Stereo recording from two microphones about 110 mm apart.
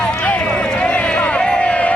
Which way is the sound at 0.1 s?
10° left (ahead or behind).